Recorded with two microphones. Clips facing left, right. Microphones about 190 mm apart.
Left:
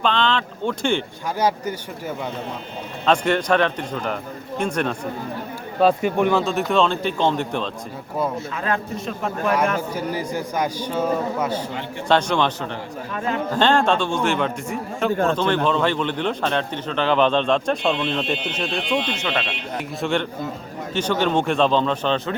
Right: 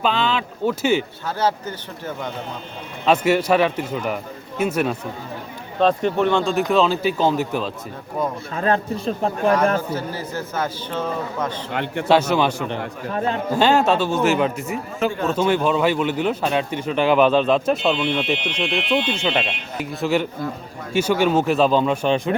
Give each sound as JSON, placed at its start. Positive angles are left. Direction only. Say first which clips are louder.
{"t": 0.0, "sound": "a man's voice", "louder": "even", "side_deg": -5}
{"t": 1.4, "sound": "a man's voice", "louder": "left 1 dB", "side_deg": 10}
{"t": 3.1, "sound": "a man's voice", "louder": "right 2 dB", "side_deg": -5}
{"t": 5.8, "sound": "speech", "louder": "even", "side_deg": 10}
{"t": 8.5, "sound": "a man's voice", "louder": "right 4 dB", "side_deg": -35}
{"t": 9.9, "sound": "a man's voice", "louder": "left 1 dB", "side_deg": 15}
{"t": 11.7, "sound": "a man's voice", "louder": "right 5 dB", "side_deg": -65}
{"t": 12.0, "sound": "a man's voice", "louder": "right 2 dB", "side_deg": -5}